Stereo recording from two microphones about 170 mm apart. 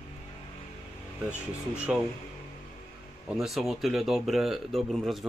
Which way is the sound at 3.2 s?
Centre (ahead or behind).